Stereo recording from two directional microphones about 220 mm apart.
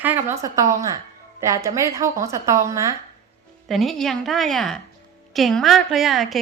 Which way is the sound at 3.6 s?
Centre (ahead or behind).